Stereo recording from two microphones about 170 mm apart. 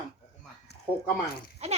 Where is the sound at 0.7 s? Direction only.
75° left (ahead or behind).